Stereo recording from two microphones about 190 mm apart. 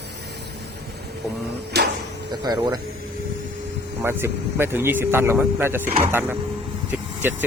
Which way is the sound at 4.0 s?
10° right (ahead or behind).